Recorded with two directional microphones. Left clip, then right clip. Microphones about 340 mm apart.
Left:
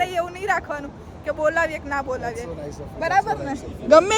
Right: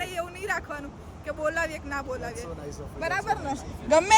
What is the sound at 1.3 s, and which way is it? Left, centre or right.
Speech, centre.